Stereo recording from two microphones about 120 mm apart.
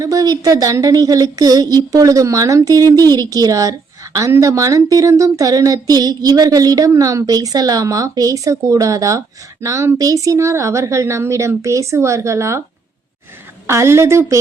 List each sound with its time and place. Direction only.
0.0 s a woman's voice: 30° right (ahead or behind)
13.7 s a woman's voice: 20° right (ahead or behind)